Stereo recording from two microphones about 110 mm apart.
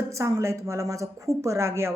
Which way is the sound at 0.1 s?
30° right (ahead or behind).